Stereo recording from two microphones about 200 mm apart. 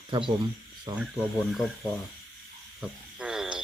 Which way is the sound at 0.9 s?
20° right (ahead or behind).